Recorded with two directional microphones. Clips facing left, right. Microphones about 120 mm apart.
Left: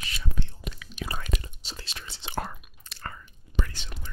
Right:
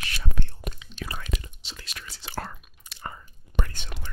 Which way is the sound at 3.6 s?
50° right (ahead or behind).